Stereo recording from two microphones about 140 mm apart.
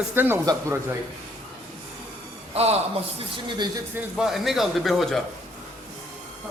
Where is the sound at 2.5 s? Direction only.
45° right (ahead or behind).